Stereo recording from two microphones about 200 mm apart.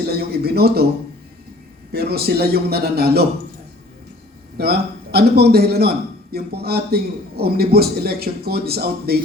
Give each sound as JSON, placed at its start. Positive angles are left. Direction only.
{"t": 0.1, "sound": "a man's voice", "side_deg": -50}
{"t": 1.9, "sound": "a man's voice", "side_deg": -50}
{"t": 4.5, "sound": "a man's voice", "side_deg": -50}